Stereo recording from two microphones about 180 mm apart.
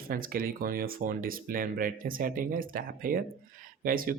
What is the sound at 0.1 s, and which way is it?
Speech, 50° right (ahead or behind).